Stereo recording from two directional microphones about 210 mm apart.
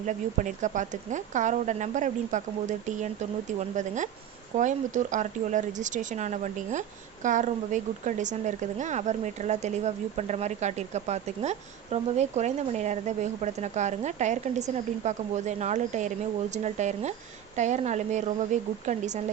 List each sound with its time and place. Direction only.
0.0 s speech: 35° right (ahead or behind)